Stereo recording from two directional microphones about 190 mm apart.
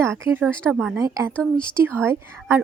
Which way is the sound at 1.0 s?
15° right (ahead or behind).